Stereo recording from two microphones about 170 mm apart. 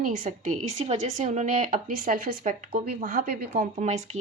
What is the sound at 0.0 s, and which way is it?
Speech, 45° right (ahead or behind).